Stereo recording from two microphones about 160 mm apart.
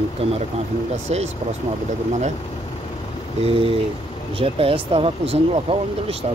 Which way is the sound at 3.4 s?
35° right (ahead or behind).